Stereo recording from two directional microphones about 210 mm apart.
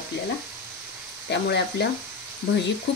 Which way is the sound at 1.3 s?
55° left (ahead or behind).